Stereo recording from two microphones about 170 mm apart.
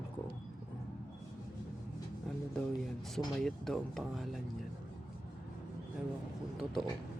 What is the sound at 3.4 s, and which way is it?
Speech, 5° left (ahead or behind).